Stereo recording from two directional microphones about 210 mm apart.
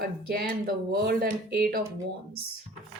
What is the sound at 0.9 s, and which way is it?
Speech, 45° right (ahead or behind).